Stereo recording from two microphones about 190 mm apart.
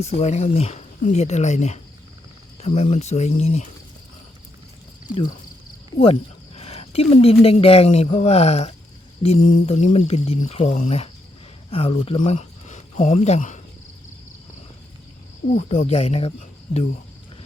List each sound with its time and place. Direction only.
0.0 s speech: 35° left (ahead or behind)
6.0 s speech: 30° left (ahead or behind)
15.4 s speech: 20° left (ahead or behind)
15.9 s speech: 30° left (ahead or behind)